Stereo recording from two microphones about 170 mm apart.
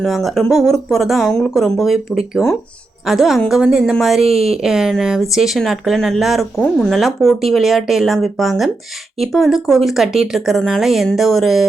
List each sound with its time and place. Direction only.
0.0 s speech: centre (ahead or behind)
4.3 s speech: 35° right (ahead or behind)
4.6 s speech: 5° right (ahead or behind)